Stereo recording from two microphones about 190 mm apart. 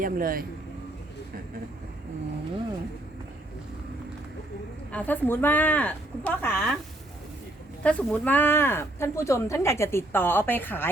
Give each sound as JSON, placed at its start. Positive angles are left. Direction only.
{"t": 0.0, "sound": "speech", "side_deg": -50}
{"t": 4.9, "sound": "speech", "side_deg": 10}
{"t": 7.9, "sound": "speech", "side_deg": 5}